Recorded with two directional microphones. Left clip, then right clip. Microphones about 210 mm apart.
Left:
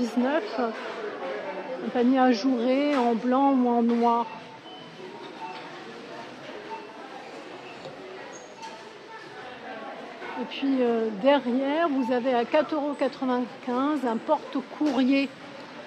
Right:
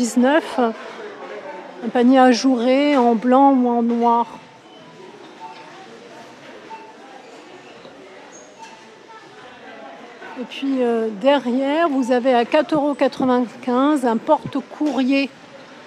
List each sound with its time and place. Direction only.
0.0 s a woman's voice: 35° right (ahead or behind)
2.0 s a woman's voice: 35° right (ahead or behind)
10.5 s a woman's voice: 20° right (ahead or behind)